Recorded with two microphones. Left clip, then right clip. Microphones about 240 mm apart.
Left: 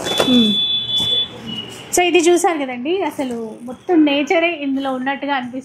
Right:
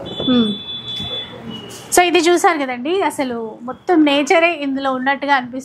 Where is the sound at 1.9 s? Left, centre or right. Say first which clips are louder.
Right 1 dB; right.